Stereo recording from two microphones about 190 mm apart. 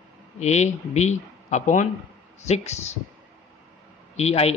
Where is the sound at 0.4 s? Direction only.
35° left (ahead or behind).